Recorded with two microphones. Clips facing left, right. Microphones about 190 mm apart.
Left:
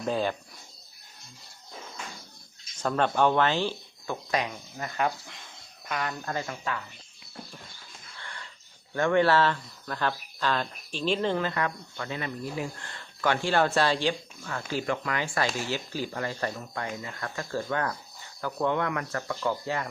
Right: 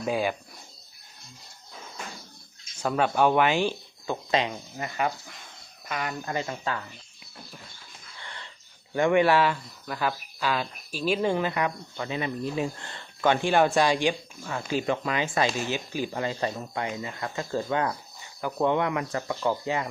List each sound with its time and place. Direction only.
0.0 s speech: 10° right (ahead or behind)
2.7 s speech: 10° right (ahead or behind); by 4.9 s 25° right (ahead or behind)
4.9 s speech: centre (ahead or behind)
6.3 s speech: 25° right (ahead or behind)
8.2 s wheeze: 20° right (ahead or behind)
9.0 s speech: 15° right (ahead or behind)